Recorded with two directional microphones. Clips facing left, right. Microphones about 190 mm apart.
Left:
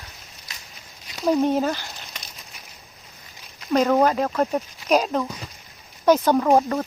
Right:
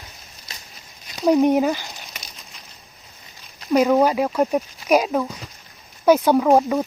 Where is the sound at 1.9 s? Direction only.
Centre (ahead or behind).